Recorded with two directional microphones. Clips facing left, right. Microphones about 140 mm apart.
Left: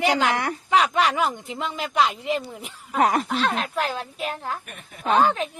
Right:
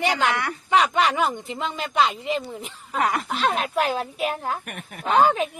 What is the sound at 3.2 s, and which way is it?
A woman's voice, centre (ahead or behind).